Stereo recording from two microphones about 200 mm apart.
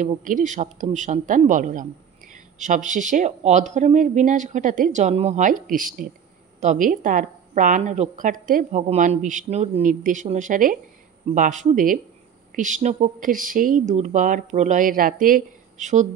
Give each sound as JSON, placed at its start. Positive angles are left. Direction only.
{"t": 0.0, "sound": "speech", "side_deg": -40}